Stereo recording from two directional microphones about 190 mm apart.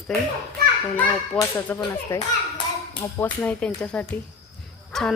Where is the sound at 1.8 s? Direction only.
20° left (ahead or behind).